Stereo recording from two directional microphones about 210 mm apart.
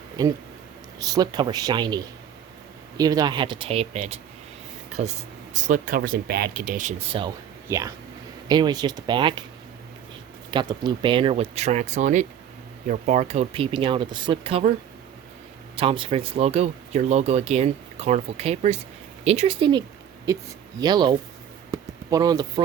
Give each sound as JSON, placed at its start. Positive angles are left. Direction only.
{"t": 0.2, "sound": "speech", "side_deg": -20}
{"t": 7.1, "sound": "speech", "side_deg": -25}
{"t": 7.7, "sound": "speech", "side_deg": -15}
{"t": 10.5, "sound": "speech", "side_deg": -20}
{"t": 15.7, "sound": "speech", "side_deg": -25}
{"t": 21.7, "sound": "a sound", "side_deg": -15}